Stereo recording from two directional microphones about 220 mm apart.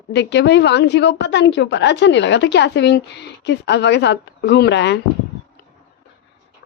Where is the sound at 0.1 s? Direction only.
50° left (ahead or behind).